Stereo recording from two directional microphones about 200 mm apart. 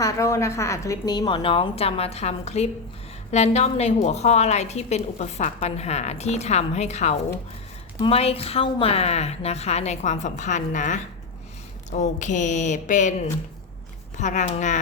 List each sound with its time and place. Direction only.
0.0 s a woman's voice: 15° left (ahead or behind); by 13.1 s 40° left (ahead or behind)
14.2 s a woman's voice: 35° left (ahead or behind)